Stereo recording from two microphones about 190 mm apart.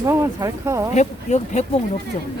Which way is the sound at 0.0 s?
15° right (ahead or behind).